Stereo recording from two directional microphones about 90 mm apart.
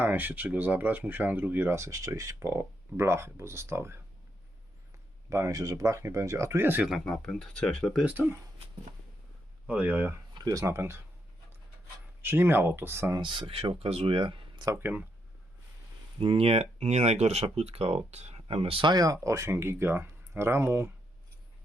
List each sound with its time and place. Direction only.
0.0 s speech: 20° right (ahead or behind)
5.3 s speech: 35° right (ahead or behind)
7.0 s speech: 5° left (ahead or behind)
8.0 s speech: 15° right (ahead or behind)
9.6 s speech: 20° right (ahead or behind)
10.3 s a sound: 50° right (ahead or behind)
10.6 s speech: 30° right (ahead or behind)
12.2 s speech: 25° right (ahead or behind)
13.1 s speech: 55° right (ahead or behind)
14.8 s speech: 25° right (ahead or behind)
16.2 s speech: 90° right
17.8 s speech: 90° right
18.9 s speech: 45° right (ahead or behind); by 20.9 s 30° right (ahead or behind)